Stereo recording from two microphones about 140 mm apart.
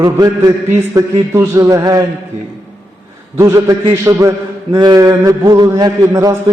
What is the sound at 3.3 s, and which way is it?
A man's voice, 25° right (ahead or behind).